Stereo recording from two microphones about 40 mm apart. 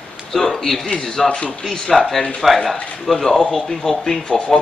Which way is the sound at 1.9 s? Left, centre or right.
Centre.